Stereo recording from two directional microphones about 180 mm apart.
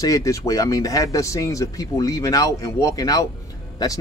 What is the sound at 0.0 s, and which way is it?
Speech, 20° left (ahead or behind).